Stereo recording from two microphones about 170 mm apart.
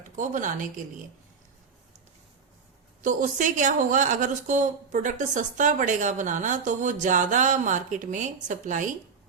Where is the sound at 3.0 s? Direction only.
50° right (ahead or behind).